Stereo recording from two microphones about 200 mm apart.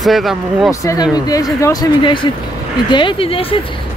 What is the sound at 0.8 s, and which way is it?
Speech, 15° left (ahead or behind).